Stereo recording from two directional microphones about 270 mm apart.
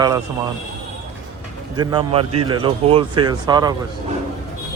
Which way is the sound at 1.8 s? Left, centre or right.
Centre.